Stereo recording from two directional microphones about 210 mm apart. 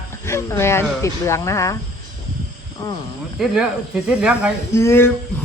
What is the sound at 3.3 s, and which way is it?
Speech, centre (ahead or behind).